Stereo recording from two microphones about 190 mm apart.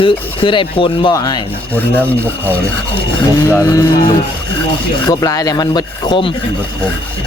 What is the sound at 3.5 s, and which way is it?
Speech, 15° left (ahead or behind).